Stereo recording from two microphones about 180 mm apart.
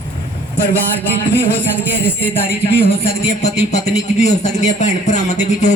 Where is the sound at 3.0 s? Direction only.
35° left (ahead or behind).